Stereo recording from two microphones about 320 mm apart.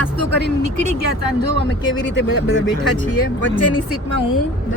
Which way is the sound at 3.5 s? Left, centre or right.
Centre.